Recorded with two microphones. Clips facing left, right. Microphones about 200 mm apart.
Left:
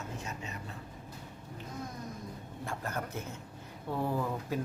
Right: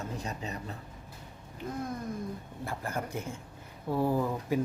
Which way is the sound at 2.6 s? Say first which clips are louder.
Right 2 dB; 10° right (ahead or behind).